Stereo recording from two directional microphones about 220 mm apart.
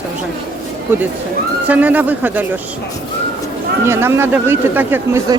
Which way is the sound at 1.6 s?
5° right (ahead or behind).